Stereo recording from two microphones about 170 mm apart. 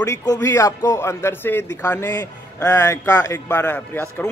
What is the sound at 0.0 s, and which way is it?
A man's voice, 20° left (ahead or behind).